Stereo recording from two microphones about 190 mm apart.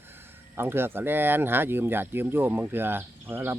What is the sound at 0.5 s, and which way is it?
Speech, 10° right (ahead or behind).